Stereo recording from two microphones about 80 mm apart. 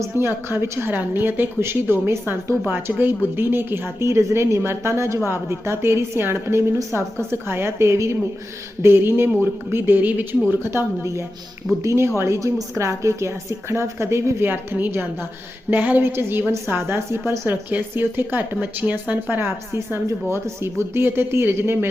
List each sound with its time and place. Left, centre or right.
0.0 s a woman's voice: right
19.4 s a woman's voice: right